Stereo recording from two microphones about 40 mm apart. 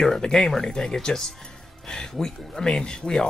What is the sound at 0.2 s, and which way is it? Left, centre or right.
Speech, centre.